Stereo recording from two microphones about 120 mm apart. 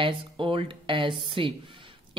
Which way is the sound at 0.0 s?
45° right (ahead or behind).